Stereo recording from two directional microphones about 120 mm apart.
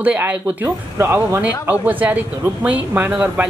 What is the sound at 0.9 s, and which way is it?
Speech, 25° right (ahead or behind).